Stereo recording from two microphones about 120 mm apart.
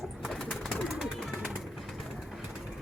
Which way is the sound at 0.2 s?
Centre (ahead or behind).